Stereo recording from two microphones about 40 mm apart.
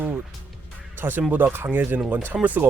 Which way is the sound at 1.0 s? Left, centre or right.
Right.